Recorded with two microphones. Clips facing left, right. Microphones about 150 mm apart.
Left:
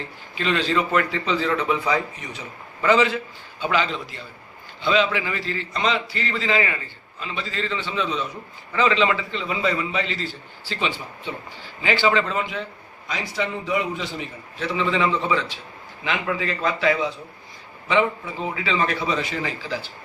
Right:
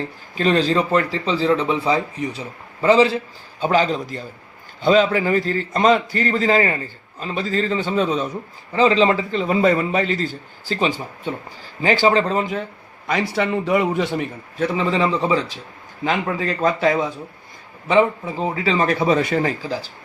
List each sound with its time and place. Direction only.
0.3 s a man's voice: 40° right (ahead or behind)
8.7 s a man's voice: 35° right (ahead or behind)
13.1 s a man's voice: 65° right (ahead or behind); by 19.9 s 45° right (ahead or behind)